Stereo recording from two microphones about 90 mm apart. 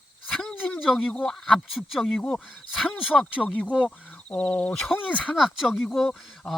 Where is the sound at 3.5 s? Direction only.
15° left (ahead or behind).